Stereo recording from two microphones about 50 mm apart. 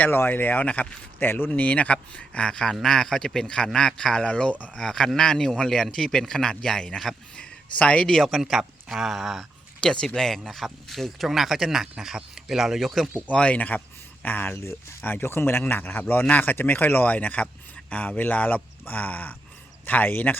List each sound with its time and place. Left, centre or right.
0.1 s a man's voice: left
0.6 s a man's voice: left
1.2 s a man's voice: left
1.5 s a man's voice: left
4.7 s speech: centre
7.3 s speech: left
8.1 s speech: centre
9.8 s speech: centre
13.2 s a man's voice: left